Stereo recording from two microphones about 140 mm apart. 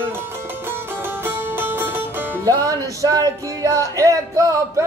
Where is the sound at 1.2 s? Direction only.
15° right (ahead or behind).